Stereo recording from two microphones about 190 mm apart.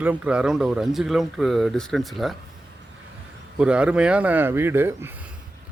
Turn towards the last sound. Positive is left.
turn(degrees=-10)  # may be behind; listen again after turning